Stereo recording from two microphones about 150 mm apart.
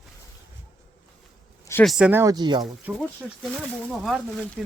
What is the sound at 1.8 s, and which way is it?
Speech, 5° right (ahead or behind).